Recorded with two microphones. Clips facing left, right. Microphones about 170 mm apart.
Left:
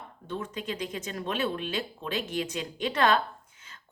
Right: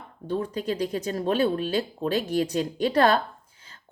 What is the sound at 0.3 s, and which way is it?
Speech, 35° right (ahead or behind).